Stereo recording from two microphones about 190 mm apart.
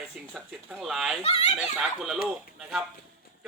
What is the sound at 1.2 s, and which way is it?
Speech, 35° left (ahead or behind).